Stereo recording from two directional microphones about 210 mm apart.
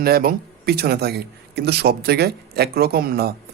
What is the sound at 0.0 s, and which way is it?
Speech, 45° right (ahead or behind).